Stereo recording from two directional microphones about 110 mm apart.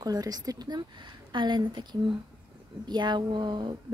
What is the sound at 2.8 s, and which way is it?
Speech, 45° right (ahead or behind).